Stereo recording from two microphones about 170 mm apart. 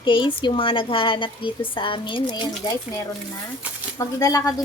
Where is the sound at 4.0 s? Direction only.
20° left (ahead or behind).